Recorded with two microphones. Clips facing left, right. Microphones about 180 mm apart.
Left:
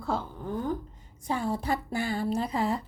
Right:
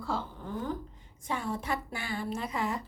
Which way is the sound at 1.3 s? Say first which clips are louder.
Left 4 dB; 35° left (ahead or behind).